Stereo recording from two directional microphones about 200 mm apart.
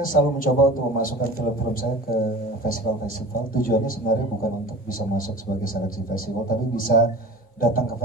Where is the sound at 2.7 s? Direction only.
45° left (ahead or behind).